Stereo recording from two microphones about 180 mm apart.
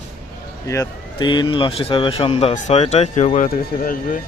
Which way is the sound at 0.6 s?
20° left (ahead or behind).